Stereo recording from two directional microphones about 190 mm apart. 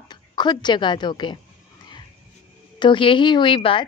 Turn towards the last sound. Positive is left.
turn(degrees=25)  # may be behind; listen again after turning